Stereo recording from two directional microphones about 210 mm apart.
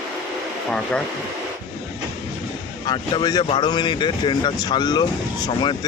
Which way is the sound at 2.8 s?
20° left (ahead or behind).